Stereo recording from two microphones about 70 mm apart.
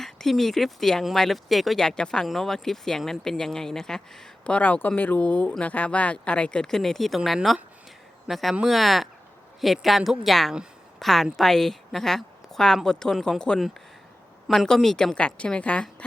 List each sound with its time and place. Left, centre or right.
0.0 s speech: centre
14.4 s speech: centre
14.7 s speech: centre
15.1 s speech: centre